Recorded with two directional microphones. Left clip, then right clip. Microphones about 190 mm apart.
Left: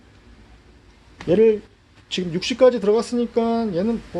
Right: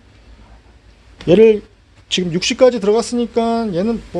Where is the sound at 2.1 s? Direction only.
30° right (ahead or behind).